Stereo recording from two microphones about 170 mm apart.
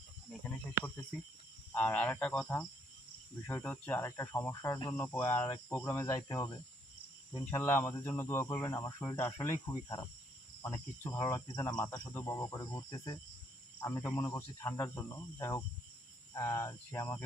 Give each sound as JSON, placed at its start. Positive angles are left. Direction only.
{"t": 1.7, "sound": "speech", "side_deg": 10}